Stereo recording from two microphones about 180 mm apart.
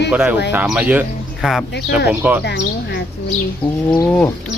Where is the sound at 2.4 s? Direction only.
70° left (ahead or behind).